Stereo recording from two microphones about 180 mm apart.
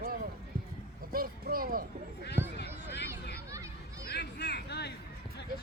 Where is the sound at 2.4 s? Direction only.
10° right (ahead or behind).